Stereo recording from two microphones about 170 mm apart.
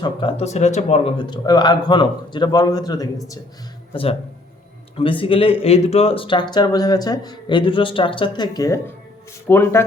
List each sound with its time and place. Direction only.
0.0 s speech: 30° left (ahead or behind)
5.2 s speech: 30° left (ahead or behind); by 9.8 s 15° left (ahead or behind)